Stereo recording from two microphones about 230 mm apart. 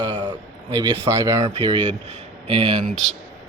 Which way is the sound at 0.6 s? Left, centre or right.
Centre.